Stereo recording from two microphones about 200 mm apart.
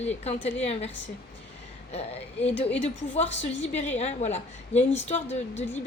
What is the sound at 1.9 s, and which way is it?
Speech, 30° left (ahead or behind).